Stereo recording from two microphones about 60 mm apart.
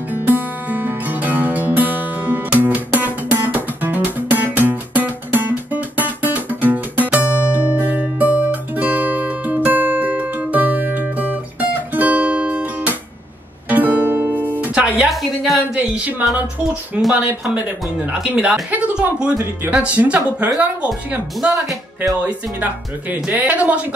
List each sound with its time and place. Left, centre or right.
0.1 s music: right
14.7 s music: centre
15.0 s a sound: centre
15.7 s a sound: centre
16.9 s speech: centre
21.5 s speech: right
22.2 s speech: right